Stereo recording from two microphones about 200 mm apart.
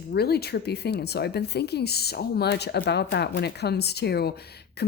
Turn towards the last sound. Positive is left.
turn(degrees=55)  # may be behind; listen again after turning